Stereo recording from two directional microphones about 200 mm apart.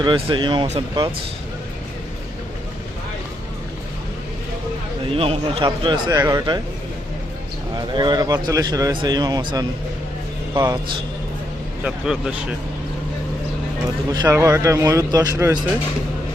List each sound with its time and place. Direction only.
0.0 s speech: 25° right (ahead or behind)
5.0 s speech: 30° right (ahead or behind)
7.8 s speech: 20° right (ahead or behind)
11.8 s speech: 5° right (ahead or behind)
14.1 s speech: 15° right (ahead or behind)